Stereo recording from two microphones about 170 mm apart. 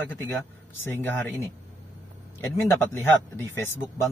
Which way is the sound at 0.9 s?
15° left (ahead or behind).